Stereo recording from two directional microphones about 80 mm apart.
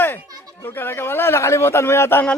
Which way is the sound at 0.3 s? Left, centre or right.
Right.